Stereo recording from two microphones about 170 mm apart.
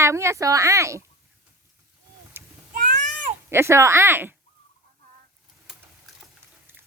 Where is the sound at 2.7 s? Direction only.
50° right (ahead or behind).